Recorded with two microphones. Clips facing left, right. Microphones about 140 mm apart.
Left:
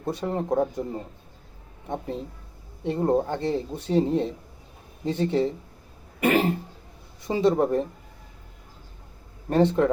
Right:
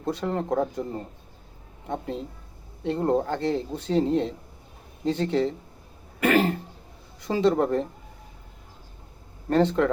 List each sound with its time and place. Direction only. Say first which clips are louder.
0.2 s speech: left 3 dB; 15° left (ahead or behind)
2.8 s speech: left 1 dB; 15° left (ahead or behind)
6.1 s throat clearing: even; 20° left (ahead or behind)
7.3 s speech: even; 15° left (ahead or behind)
9.5 s speech: left 1 dB; 15° left (ahead or behind)